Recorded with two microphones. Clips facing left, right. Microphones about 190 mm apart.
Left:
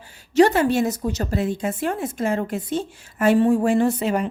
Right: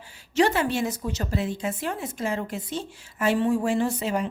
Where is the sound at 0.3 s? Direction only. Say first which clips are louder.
Left 6 dB; 45° left (ahead or behind).